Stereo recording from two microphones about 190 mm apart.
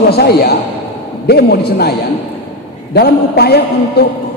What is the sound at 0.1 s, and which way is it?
A man's voice, 55° left (ahead or behind).